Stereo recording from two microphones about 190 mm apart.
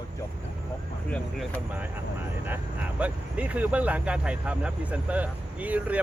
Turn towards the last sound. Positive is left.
turn(degrees=-5)  # may be behind; listen again after turning